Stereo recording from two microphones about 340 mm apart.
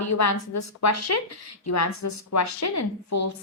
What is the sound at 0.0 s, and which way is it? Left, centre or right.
A woman's voice, left.